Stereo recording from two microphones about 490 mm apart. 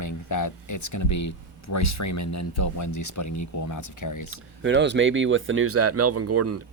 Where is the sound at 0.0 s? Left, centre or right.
Left.